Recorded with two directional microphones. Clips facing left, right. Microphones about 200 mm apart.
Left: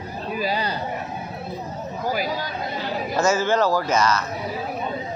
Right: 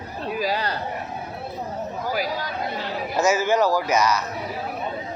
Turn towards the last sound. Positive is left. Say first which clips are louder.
# even
turn(degrees=-15)  # may be behind; listen again after turning